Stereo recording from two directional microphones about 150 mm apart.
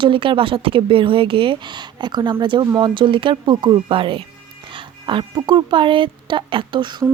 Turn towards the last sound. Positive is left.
turn(degrees=-35)  # may be behind; listen again after turning